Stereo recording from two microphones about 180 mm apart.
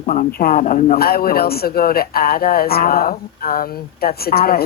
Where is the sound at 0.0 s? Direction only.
45° left (ahead or behind).